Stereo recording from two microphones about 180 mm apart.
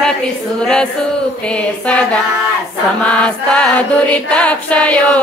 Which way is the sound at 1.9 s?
5° left (ahead or behind).